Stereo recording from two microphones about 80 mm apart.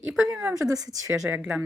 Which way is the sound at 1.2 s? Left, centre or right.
Right.